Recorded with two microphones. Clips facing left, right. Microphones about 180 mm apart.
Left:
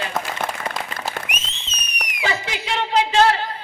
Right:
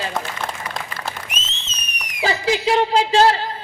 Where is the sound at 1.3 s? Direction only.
15° left (ahead or behind).